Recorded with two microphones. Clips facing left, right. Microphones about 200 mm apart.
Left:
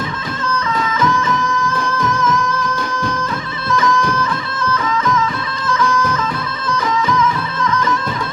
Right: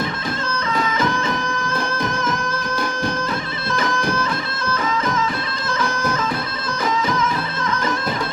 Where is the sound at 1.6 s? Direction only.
30° right (ahead or behind).